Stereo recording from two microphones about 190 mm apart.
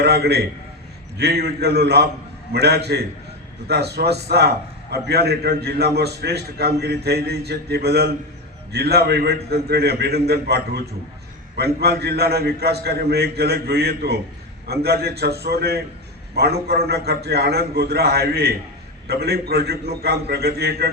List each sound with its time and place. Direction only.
0.0 s a man's voice: 60° right (ahead or behind)